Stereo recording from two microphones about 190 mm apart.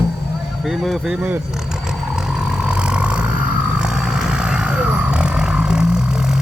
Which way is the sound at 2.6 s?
5° right (ahead or behind).